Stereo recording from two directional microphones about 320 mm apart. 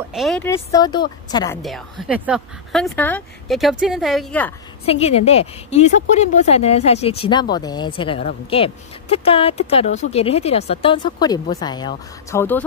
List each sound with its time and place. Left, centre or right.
0.1 s a woman's voice: centre
1.6 s speech: centre
4.8 s a woman's voice: centre